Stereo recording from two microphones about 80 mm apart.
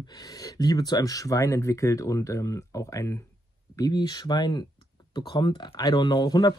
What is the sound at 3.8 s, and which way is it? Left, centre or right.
Speech, left.